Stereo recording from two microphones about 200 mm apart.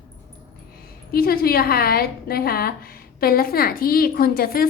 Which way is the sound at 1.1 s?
50° left (ahead or behind).